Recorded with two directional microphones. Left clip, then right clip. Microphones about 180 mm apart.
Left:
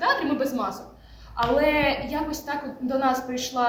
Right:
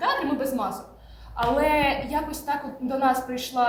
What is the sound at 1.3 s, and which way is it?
A woman's voice, 5° left (ahead or behind).